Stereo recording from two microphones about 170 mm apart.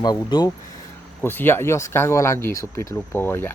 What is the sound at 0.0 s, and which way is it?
Speech, 25° left (ahead or behind).